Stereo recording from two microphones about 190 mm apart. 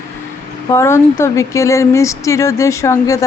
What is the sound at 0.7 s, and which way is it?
Speech, 15° left (ahead or behind).